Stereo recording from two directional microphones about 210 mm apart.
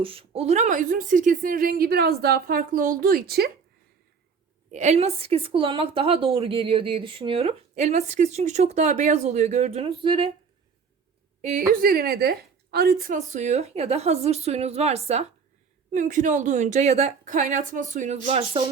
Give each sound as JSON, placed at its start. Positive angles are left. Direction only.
{"t": 0.0, "sound": "a woman's voice", "side_deg": -25}
{"t": 4.7, "sound": "a woman's voice", "side_deg": -35}
{"t": 11.4, "sound": "a woman's voice", "side_deg": -40}